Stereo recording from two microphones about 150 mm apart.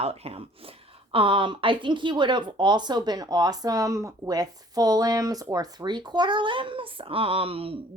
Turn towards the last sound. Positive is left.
turn(degrees=-40)  # may be behind; listen again after turning